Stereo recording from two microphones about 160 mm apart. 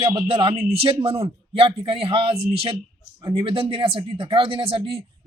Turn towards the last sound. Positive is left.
turn(degrees=-35)  # may be behind; listen again after turning